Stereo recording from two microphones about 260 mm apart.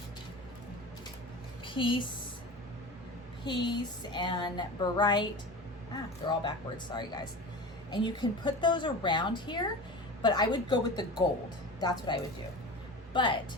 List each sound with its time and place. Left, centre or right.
1.6 s a woman's voice: centre
3.4 s a woman's voice: centre